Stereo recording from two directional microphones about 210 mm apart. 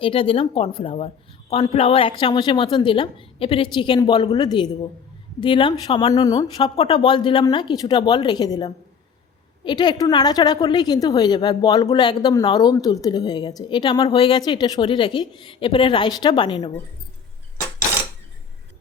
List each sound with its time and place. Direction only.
0.0 s a woman's voice: 25° left (ahead or behind)